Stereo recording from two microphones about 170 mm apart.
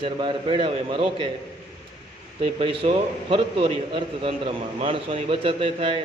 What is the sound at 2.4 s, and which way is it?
A man's voice, 30° right (ahead or behind).